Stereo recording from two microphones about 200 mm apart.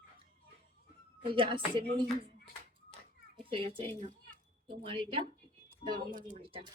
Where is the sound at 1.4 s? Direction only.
25° right (ahead or behind).